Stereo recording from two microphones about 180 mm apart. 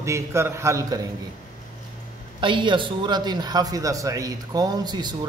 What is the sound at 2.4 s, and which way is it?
A man's voice, 25° right (ahead or behind).